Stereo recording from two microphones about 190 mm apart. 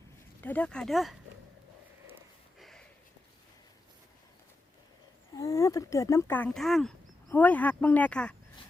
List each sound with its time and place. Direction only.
0.4 s speech: 5° left (ahead or behind)
2.6 s a sound: centre (ahead or behind)
5.3 s speech: 15° left (ahead or behind)